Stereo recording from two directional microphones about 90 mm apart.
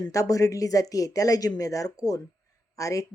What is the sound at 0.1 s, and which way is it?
Speech, 35° left (ahead or behind).